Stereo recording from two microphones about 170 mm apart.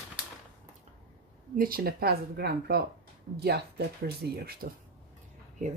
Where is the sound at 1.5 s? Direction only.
60° right (ahead or behind).